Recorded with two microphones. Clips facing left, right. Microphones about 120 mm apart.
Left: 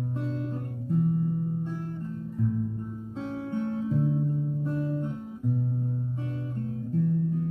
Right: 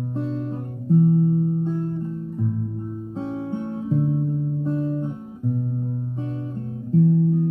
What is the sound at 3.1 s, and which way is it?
Music, 25° right (ahead or behind).